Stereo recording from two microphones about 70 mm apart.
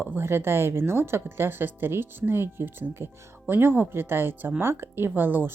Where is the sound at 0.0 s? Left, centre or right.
Right.